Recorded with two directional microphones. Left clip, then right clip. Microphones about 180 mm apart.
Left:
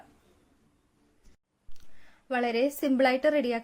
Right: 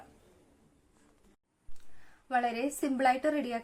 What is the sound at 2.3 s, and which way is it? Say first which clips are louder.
A woman's voice: left 3 dB; 45° left (ahead or behind).